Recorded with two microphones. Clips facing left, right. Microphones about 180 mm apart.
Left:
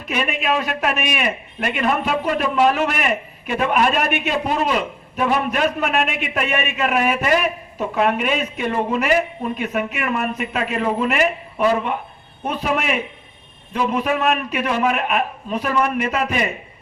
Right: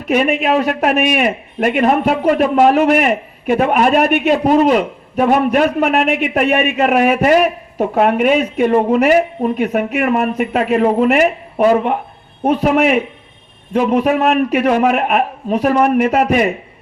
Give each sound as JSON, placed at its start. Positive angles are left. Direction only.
{"t": 0.1, "sound": "a man's voice", "side_deg": -55}
{"t": 14.1, "sound": "a man's voice", "side_deg": -60}